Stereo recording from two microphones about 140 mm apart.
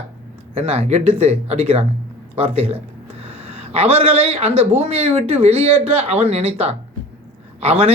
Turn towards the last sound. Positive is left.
turn(degrees=-45)  # may be behind; listen again after turning